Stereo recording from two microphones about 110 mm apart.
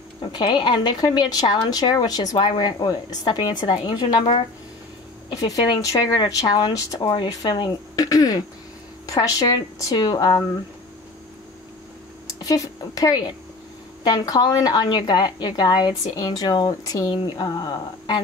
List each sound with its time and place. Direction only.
0.2 s speech: 45° left (ahead or behind)
5.3 s speech: 35° left (ahead or behind)
12.3 s a woman's voice: 30° left (ahead or behind)